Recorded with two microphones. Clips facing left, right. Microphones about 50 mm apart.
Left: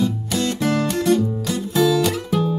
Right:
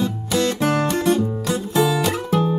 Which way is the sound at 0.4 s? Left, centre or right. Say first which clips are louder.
Right 2 dB; right.